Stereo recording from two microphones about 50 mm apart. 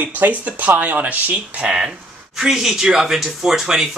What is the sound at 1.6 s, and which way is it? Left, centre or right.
A woman's voice, centre.